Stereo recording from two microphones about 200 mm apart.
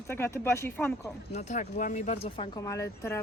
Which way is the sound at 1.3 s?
35° left (ahead or behind).